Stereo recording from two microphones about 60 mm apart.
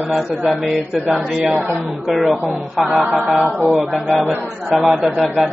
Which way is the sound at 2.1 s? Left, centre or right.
Centre.